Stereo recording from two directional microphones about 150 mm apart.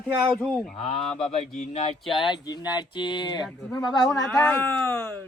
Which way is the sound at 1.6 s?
50° left (ahead or behind).